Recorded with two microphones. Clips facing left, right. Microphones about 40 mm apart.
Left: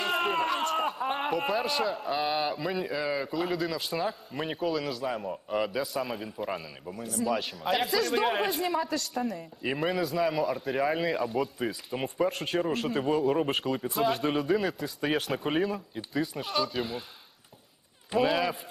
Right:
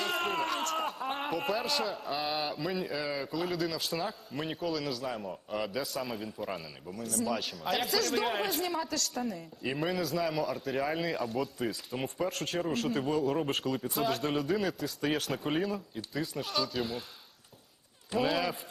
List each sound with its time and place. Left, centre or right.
0.0 s a man's voice: centre
18.2 s a man's voice: centre